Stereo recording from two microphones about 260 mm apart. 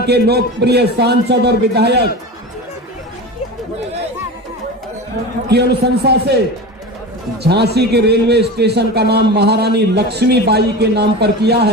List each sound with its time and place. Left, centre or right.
0.0 s a man's voice: right
5.5 s a man's voice: right
7.4 s a man's voice: right